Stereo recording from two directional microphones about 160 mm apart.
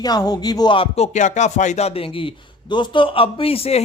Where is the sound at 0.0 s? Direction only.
25° left (ahead or behind).